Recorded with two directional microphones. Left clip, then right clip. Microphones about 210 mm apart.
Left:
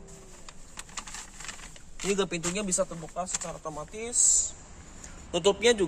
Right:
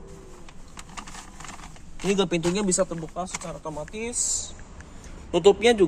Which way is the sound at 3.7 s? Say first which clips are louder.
Right 4 dB; centre (ahead or behind).